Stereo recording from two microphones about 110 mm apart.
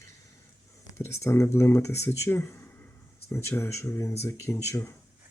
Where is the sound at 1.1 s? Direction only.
25° left (ahead or behind).